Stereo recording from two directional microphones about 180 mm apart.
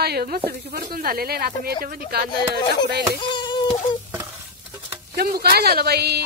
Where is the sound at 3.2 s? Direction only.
25° left (ahead or behind).